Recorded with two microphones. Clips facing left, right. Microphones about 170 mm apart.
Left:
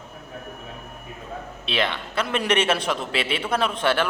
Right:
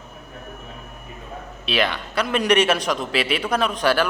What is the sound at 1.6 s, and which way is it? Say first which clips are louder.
A man's voice: right 3 dB; 25° left (ahead or behind).